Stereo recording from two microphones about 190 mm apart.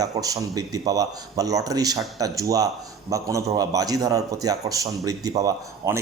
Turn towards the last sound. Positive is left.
turn(degrees=-15)  # may be behind; listen again after turning